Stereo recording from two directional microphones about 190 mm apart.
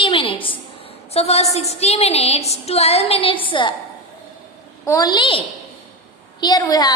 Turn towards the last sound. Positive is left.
turn(degrees=20)  # may be behind; listen again after turning